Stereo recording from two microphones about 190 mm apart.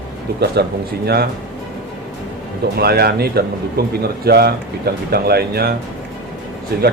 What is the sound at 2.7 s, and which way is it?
A man's voice, 55° right (ahead or behind).